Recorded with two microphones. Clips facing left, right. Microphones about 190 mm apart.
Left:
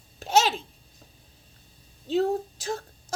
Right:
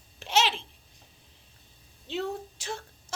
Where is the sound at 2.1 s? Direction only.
40° left (ahead or behind).